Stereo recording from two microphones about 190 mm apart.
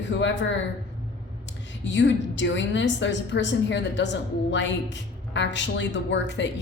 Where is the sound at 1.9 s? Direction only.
70° left (ahead or behind).